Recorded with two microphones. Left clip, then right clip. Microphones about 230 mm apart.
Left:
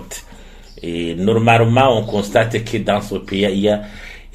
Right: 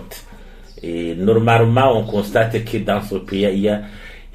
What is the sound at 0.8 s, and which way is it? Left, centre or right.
Speech, left.